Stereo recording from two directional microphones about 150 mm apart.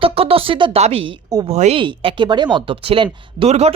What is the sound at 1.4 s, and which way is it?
Speech, 45° right (ahead or behind).